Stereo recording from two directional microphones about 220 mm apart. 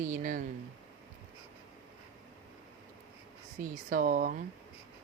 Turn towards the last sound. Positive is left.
turn(degrees=-40)  # may be behind; listen again after turning